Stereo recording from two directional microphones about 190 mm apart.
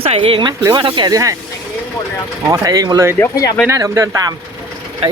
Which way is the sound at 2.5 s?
20° right (ahead or behind).